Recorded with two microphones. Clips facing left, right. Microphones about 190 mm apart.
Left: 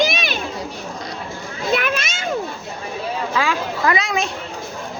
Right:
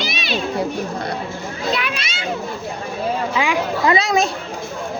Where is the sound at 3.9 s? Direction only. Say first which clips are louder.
Right 4 dB; 40° right (ahead or behind).